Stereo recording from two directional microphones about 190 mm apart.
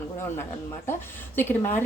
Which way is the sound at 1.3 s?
10° left (ahead or behind).